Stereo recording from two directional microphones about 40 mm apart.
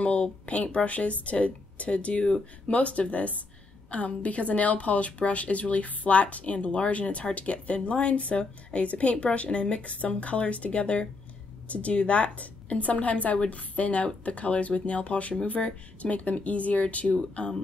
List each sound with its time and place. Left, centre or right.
0.0 s a woman's voice: left